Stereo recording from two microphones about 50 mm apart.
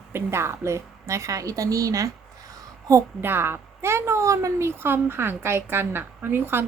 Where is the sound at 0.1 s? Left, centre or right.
Right.